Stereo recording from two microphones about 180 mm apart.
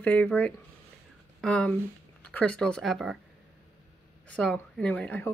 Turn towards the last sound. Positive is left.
turn(degrees=10)  # may be behind; listen again after turning